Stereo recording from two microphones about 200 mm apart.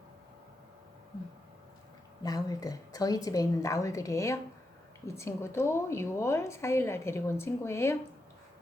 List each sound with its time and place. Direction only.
2.2 s a woman's voice: 20° left (ahead or behind)